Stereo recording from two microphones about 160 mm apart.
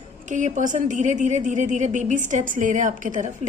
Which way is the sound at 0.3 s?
50° right (ahead or behind).